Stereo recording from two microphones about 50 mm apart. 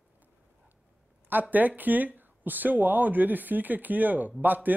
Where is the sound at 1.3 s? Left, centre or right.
Right.